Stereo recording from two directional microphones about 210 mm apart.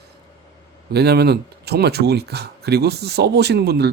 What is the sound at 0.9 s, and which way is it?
Speech, 50° right (ahead or behind).